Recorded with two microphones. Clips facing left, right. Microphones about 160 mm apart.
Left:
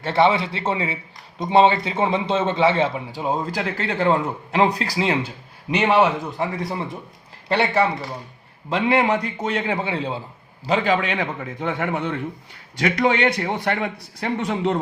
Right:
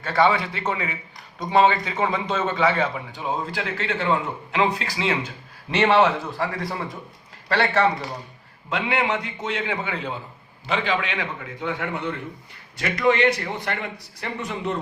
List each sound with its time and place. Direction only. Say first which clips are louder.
0.0 s a man's voice: left 2 dB; 25° left (ahead or behind)
5.7 s a man's voice: even; 10° left (ahead or behind)
8.7 s a man's voice: left 5 dB; 35° left (ahead or behind)
10.7 s a man's voice: left 5 dB; 40° left (ahead or behind)
12.8 s a man's voice: left 1 dB; 65° left (ahead or behind)